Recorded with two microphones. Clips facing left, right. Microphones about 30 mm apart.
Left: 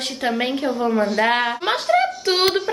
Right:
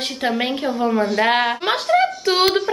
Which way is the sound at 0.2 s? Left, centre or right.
Centre.